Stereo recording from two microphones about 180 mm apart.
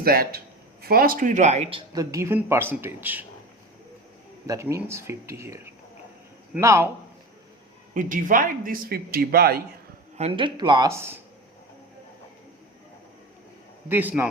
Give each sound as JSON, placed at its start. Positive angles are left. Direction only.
{"t": 0.0, "sound": "speech", "side_deg": -55}
{"t": 1.9, "sound": "speech", "side_deg": -20}
{"t": 4.4, "sound": "speech", "side_deg": -15}
{"t": 7.9, "sound": "speech", "side_deg": -50}
{"t": 10.2, "sound": "speech", "side_deg": -30}
{"t": 13.8, "sound": "speech", "side_deg": -10}